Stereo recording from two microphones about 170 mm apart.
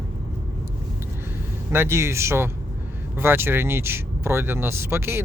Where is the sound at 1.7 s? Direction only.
15° right (ahead or behind).